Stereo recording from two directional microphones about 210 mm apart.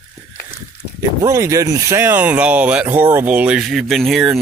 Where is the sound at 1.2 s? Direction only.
15° right (ahead or behind).